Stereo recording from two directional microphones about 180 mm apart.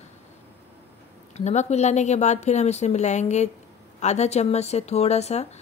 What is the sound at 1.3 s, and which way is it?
Speech, 40° left (ahead or behind).